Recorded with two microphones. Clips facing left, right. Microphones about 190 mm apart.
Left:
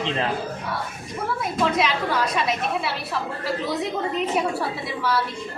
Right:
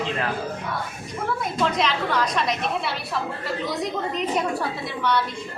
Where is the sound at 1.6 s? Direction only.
5° left (ahead or behind).